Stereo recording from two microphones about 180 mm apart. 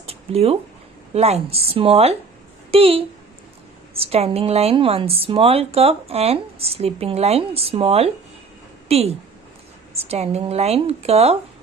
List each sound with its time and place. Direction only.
0.0 s a sound: 35° right (ahead or behind)
1.1 s speech: 35° right (ahead or behind)
4.0 s speech: 35° right (ahead or behind)